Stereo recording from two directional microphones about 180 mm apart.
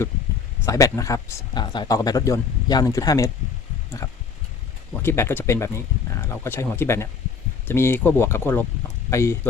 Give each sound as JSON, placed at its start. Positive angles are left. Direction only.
{"t": 0.6, "sound": "speech", "side_deg": 20}
{"t": 5.0, "sound": "speech", "side_deg": 15}